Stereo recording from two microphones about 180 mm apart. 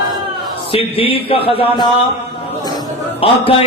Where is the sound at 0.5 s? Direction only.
30° left (ahead or behind).